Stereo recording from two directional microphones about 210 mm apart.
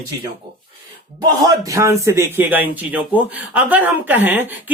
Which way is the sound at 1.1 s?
15° right (ahead or behind).